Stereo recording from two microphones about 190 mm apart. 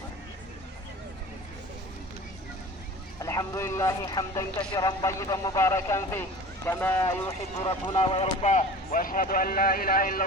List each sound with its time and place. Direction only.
3.2 s speech: 15° left (ahead or behind); by 10.2 s 45° left (ahead or behind)